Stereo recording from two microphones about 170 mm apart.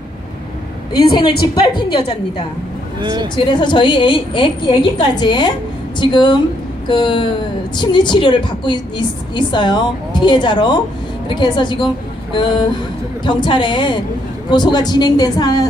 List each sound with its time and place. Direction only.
0.9 s a woman's voice: 25° left (ahead or behind)
3.0 s speech: 25° right (ahead or behind)
3.3 s a woman's voice: 25° left (ahead or behind)